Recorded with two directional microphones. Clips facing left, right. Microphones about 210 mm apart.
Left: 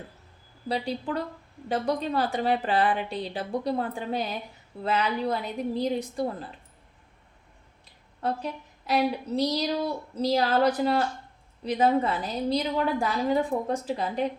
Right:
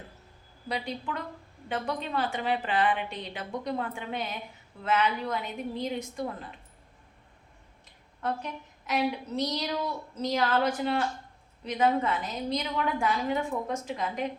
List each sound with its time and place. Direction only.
0.7 s a woman's voice: 35° left (ahead or behind)
8.2 s a woman's voice: 35° left (ahead or behind)